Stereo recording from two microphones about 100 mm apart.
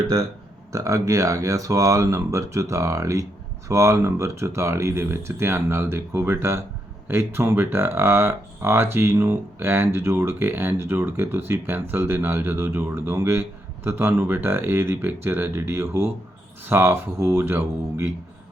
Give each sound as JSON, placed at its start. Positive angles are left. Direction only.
{"t": 0.7, "sound": "speech", "side_deg": -30}